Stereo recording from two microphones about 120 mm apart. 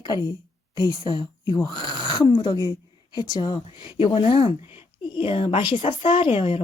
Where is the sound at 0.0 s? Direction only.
35° left (ahead or behind).